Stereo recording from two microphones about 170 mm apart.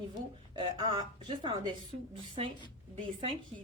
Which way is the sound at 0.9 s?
30° right (ahead or behind).